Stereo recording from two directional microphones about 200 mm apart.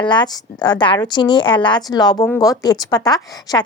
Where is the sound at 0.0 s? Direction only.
20° left (ahead or behind).